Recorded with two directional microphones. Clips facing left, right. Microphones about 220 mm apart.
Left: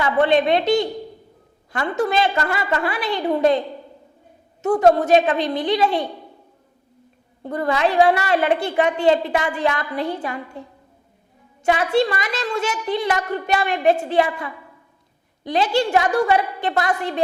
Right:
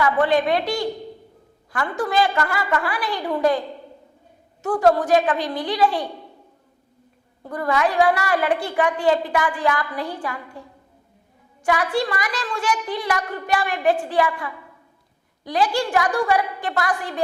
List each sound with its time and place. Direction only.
0.0 s a woman's voice: 25° left (ahead or behind)
4.6 s a woman's voice: 20° left (ahead or behind)
7.4 s a woman's voice: 25° left (ahead or behind)
11.6 s a woman's voice: 25° left (ahead or behind)